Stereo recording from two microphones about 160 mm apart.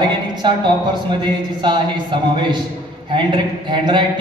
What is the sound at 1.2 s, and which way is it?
A man's voice, 30° right (ahead or behind).